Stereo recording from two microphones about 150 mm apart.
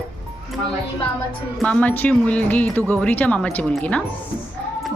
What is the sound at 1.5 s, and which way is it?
Speech, 5° left (ahead or behind).